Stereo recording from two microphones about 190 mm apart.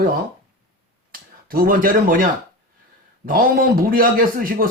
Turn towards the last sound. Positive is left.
turn(degrees=-50)  # may be behind; listen again after turning